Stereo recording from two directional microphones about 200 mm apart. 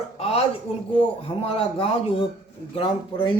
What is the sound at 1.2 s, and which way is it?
Speech, 25° left (ahead or behind).